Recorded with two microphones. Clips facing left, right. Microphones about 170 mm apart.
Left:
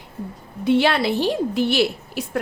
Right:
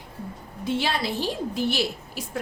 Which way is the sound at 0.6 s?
65° left (ahead or behind).